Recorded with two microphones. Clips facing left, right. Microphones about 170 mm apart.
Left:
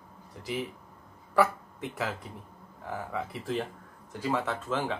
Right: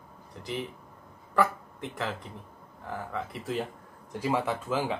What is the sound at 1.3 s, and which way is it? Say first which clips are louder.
Speech: left 1 dB; 5° left (ahead or behind).